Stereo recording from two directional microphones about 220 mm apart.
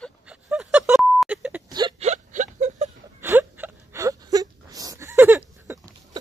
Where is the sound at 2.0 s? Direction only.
30° right (ahead or behind).